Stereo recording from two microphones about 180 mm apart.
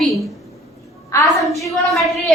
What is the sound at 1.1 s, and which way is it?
Speech, 15° left (ahead or behind).